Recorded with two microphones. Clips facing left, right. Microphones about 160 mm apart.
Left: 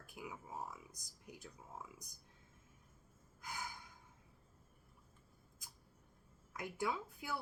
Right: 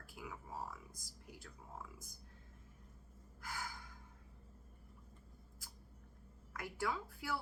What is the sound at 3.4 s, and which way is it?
Gasp, 20° left (ahead or behind).